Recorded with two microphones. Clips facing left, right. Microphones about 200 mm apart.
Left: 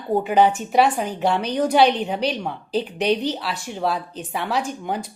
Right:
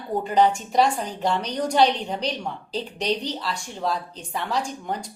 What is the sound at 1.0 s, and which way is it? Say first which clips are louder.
Speech: left 4 dB; 60° left (ahead or behind).